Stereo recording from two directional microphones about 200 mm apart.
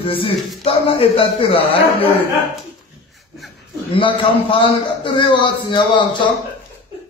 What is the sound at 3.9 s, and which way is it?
Speech, 25° left (ahead or behind).